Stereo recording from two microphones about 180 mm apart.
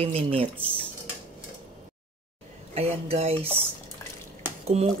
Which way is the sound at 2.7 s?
35° right (ahead or behind).